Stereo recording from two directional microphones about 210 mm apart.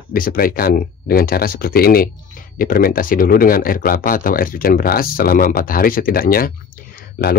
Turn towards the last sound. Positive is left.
turn(degrees=45)  # may be behind; listen again after turning